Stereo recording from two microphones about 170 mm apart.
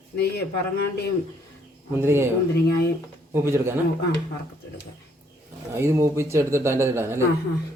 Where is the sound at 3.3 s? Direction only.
15° right (ahead or behind).